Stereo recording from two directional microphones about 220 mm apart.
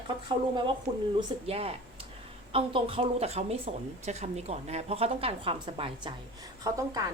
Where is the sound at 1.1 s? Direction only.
25° right (ahead or behind).